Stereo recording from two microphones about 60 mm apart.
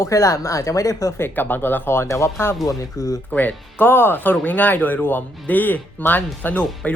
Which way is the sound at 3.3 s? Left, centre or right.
Left.